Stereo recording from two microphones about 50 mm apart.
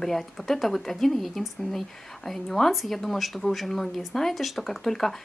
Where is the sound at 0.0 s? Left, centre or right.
Centre.